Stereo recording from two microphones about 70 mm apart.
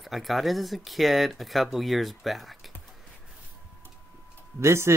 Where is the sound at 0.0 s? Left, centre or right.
Centre.